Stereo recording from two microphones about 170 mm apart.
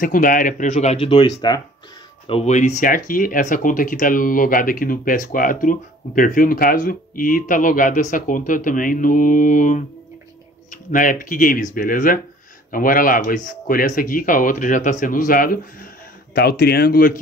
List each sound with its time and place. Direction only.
0.0 s speech: 55° left (ahead or behind); by 1.6 s 25° left (ahead or behind)
2.2 s speech: 35° left (ahead or behind)
2.8 s speech: 55° left (ahead or behind)